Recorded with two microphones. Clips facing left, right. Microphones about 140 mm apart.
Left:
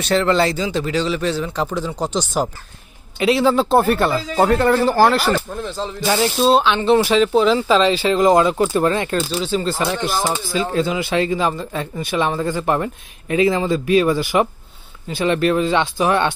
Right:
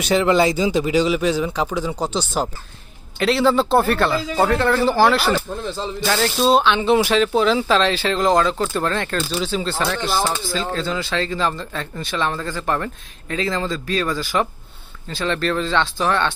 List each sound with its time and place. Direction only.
0.0 s speech: 10° right (ahead or behind); by 16.3 s 20° left (ahead or behind)